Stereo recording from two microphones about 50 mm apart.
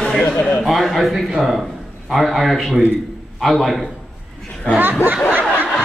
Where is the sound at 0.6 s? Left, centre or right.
Centre.